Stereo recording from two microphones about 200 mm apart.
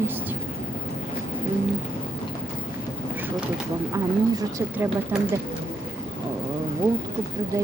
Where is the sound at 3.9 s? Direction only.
15° right (ahead or behind).